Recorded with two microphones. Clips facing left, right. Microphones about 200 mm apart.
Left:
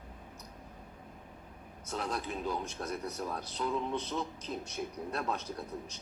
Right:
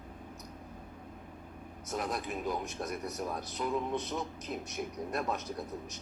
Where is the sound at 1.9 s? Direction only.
15° right (ahead or behind).